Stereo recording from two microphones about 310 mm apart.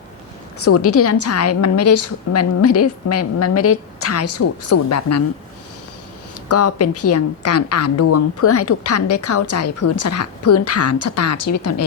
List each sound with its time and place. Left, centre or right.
0.6 s a woman's voice: left
6.5 s a woman's voice: left
9.0 s a woman's voice: left
9.3 s a woman's voice: left